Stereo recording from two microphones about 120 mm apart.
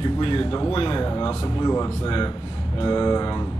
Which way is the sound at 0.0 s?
45° left (ahead or behind).